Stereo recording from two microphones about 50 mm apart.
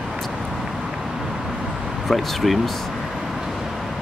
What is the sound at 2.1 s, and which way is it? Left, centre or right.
Speech, centre.